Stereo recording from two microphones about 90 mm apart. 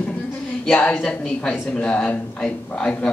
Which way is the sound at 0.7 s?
15° left (ahead or behind).